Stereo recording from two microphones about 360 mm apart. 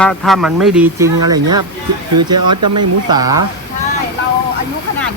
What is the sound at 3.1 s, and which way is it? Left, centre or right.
Speech, centre.